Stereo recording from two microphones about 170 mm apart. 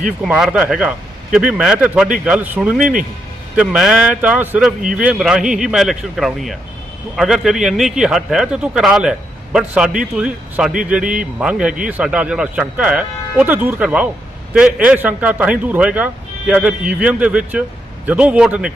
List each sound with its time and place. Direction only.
0.2 s a man's voice: 5° right (ahead or behind)
2.7 s speech: 55° right (ahead or behind)
3.5 s a man's voice: 5° right (ahead or behind)